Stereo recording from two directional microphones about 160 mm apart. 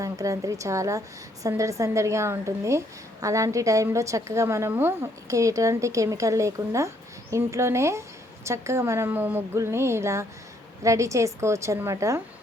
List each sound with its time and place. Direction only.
0.0 s a woman's voice: 20° right (ahead or behind)